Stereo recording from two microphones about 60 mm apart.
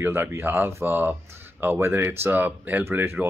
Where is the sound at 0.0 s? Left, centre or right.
Right.